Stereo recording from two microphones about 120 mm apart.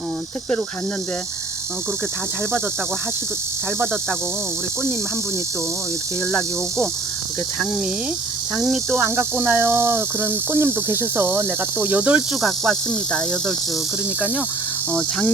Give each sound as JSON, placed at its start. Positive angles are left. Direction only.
{"t": 8.5, "sound": "speech", "side_deg": 0}
{"t": 9.0, "sound": "speech", "side_deg": -20}